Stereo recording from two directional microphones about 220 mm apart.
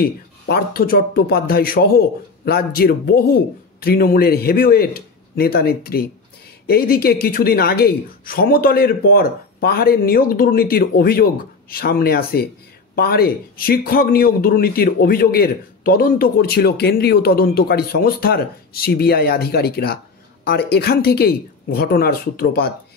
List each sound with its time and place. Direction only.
0.0 s speech: 45° left (ahead or behind)